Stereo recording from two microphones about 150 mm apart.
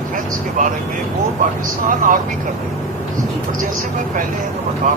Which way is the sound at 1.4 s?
60° right (ahead or behind).